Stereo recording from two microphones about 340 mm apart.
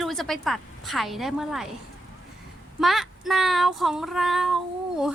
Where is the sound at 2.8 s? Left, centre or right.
Centre.